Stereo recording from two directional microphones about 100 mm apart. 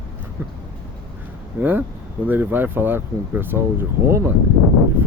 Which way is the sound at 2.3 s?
20° right (ahead or behind).